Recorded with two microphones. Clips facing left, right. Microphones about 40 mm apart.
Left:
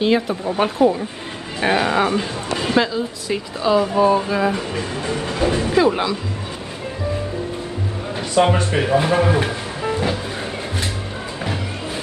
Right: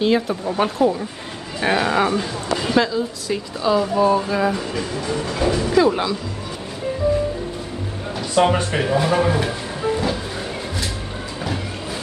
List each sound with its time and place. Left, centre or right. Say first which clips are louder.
0.0 s speech: left 1 dB; centre
2.1 s a woman's voice: even; left
4.7 s speech: even; left
5.8 s speech: even; centre
8.4 s speech: left 1 dB; centre
9.1 s speech: left 1 dB; centre
9.4 s music: even; left